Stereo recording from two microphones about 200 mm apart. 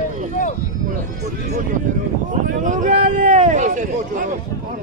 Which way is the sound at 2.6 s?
40° right (ahead or behind).